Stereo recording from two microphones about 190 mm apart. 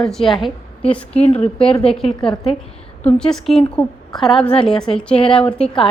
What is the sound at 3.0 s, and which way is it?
A woman's voice, 5° left (ahead or behind).